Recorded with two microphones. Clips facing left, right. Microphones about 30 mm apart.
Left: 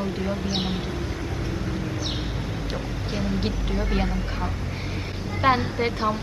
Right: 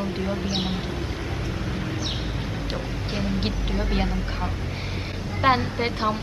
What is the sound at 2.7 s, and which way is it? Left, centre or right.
Speech, centre.